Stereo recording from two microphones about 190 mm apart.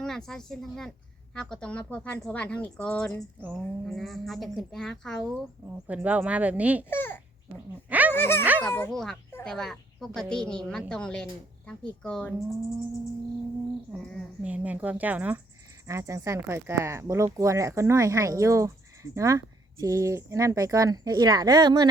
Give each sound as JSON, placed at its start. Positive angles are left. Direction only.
{"t": 0.0, "sound": "a woman's voice", "side_deg": 5}
{"t": 6.9, "sound": "speech", "side_deg": 10}
{"t": 7.9, "sound": "a sound", "side_deg": -10}
{"t": 8.1, "sound": "a woman's voice", "side_deg": 10}
{"t": 13.9, "sound": "a woman's voice", "side_deg": 0}